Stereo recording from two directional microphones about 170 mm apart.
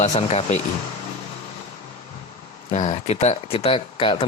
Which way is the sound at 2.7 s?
40° left (ahead or behind).